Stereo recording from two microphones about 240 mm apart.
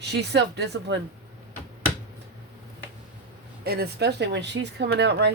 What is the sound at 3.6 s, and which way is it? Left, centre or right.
Speech, right.